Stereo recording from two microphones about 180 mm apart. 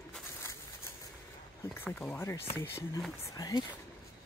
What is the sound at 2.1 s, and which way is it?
Speech, 15° left (ahead or behind).